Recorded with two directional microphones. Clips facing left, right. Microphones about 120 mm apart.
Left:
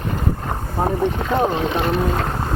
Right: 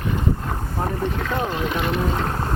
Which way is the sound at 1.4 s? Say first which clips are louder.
Left 5 dB; 30° left (ahead or behind).